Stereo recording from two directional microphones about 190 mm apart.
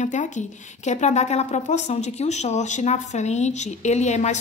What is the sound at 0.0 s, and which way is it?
A woman's voice, 40° left (ahead or behind).